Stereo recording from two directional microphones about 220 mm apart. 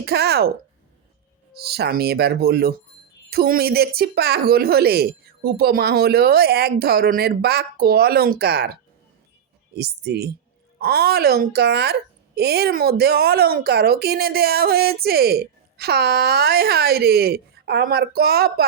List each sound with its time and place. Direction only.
0.0 s speech: 45° right (ahead or behind)
1.6 s a woman's voice: 45° right (ahead or behind)